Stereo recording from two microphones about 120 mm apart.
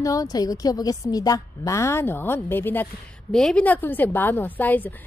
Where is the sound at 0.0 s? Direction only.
30° left (ahead or behind).